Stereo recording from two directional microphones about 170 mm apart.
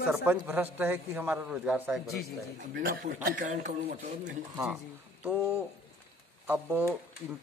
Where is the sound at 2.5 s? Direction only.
55° right (ahead or behind).